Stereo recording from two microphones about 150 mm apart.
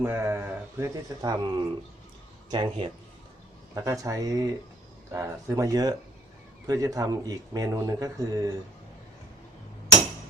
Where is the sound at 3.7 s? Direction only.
20° right (ahead or behind).